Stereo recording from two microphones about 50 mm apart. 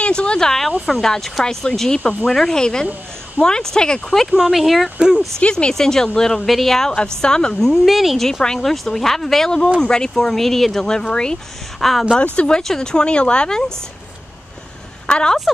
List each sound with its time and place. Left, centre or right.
0.0 s a sound: left
1.0 s speech: centre
4.3 s speech: centre
4.9 s speech: centre
5.4 s speech: centre
7.7 s speech: centre
8.3 s speech: centre
11.8 s speech: centre
12.2 s speech: centre
15.0 s speech: centre